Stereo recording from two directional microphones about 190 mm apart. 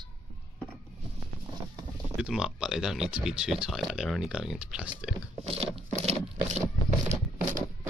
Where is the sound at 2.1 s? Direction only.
5° right (ahead or behind).